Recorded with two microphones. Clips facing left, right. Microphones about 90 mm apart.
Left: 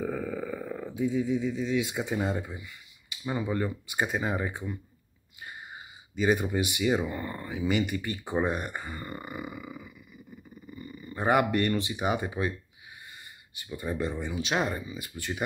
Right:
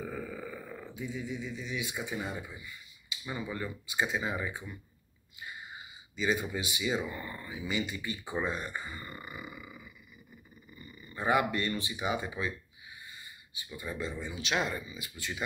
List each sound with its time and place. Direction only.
0.0 s a sound: 70° left (ahead or behind); by 2.1 s 90° left
2.2 s speech: 70° left (ahead or behind)
3.6 s speech: 45° left (ahead or behind)
6.1 s speech: 50° left (ahead or behind)
6.7 s speech: 60° left (ahead or behind)
7.1 s speech: 45° left (ahead or behind)
7.5 s speech: 60° left (ahead or behind)
11.0 s speech: 50° left (ahead or behind)
13.7 s speech: 55° left (ahead or behind)
14.3 s speech: 40° left (ahead or behind)